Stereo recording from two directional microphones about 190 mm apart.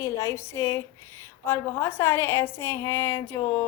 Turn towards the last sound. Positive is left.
turn(degrees=10)  # may be behind; listen again after turning